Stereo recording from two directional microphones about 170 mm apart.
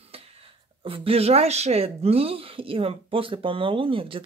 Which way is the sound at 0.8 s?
35° right (ahead or behind).